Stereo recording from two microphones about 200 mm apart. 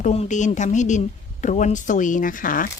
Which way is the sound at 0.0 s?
35° left (ahead or behind).